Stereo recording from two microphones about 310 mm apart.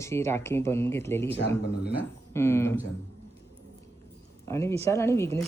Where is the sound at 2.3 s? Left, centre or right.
Centre.